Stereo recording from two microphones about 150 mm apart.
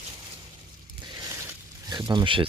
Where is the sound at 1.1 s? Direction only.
25° right (ahead or behind).